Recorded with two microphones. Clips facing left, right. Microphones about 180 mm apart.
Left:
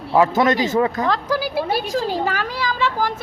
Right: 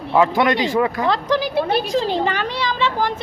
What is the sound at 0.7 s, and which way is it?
Speech, 20° left (ahead or behind).